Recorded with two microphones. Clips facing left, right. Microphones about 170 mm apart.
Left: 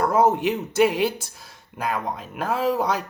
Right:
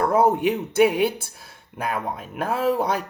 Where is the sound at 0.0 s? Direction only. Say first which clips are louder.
Even; 55° right (ahead or behind).